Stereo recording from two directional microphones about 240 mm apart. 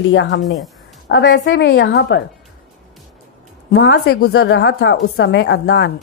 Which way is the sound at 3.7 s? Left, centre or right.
Left.